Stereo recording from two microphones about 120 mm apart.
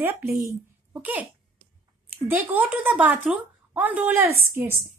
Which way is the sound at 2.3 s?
15° right (ahead or behind).